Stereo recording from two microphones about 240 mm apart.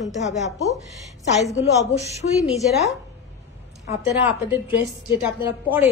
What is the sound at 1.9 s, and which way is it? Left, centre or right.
Speech, left.